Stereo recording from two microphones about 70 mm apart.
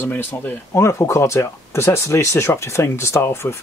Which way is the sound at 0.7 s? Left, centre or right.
Left.